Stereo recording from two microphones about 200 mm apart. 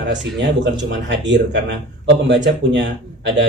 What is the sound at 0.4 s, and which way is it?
Speech, 65° right (ahead or behind).